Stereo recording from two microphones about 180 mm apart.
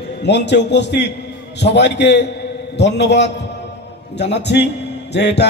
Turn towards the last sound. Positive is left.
turn(degrees=75)  # may be behind; listen again after turning